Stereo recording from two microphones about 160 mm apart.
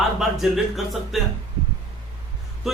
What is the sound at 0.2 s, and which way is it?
Speech, centre (ahead or behind).